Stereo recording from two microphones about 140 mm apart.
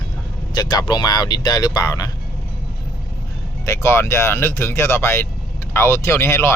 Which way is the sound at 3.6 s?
20° left (ahead or behind).